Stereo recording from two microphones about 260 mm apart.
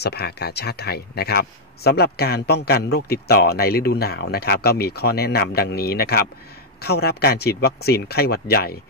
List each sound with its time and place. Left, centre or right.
0.0 s speech: left